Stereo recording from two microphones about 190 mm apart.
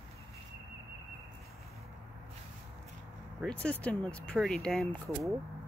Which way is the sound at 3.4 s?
5° left (ahead or behind).